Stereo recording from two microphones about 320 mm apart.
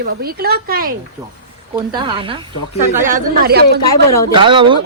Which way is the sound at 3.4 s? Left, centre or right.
Right.